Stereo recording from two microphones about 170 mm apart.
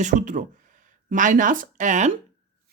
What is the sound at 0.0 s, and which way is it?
Speech, 50° right (ahead or behind).